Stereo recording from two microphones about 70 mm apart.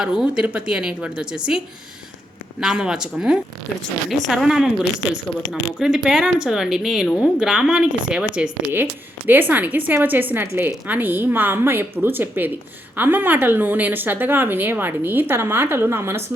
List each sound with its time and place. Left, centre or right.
0.0 s speech: centre
8.7 s a woman's voice: right
10.4 s a woman's voice: right
10.8 s a woman's voice: right